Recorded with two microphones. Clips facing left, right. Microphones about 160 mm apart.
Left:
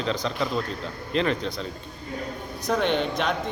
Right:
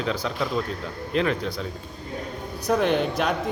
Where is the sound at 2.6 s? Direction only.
5° right (ahead or behind).